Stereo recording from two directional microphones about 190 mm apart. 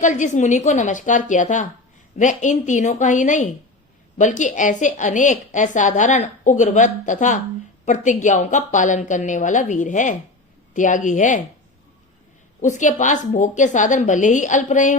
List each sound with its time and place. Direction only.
0.0 s a woman's voice: 40° left (ahead or behind)
12.6 s a woman's voice: 40° left (ahead or behind)